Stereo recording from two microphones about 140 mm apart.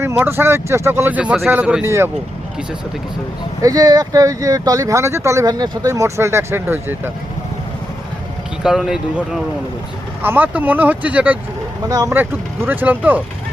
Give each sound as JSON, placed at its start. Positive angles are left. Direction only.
{"t": 0.2, "sound": "speech", "side_deg": -15}
{"t": 3.6, "sound": "speech", "side_deg": -25}
{"t": 8.6, "sound": "speech", "side_deg": -5}
{"t": 11.9, "sound": "speech", "side_deg": -25}
{"t": 12.1, "sound": "speech", "side_deg": -15}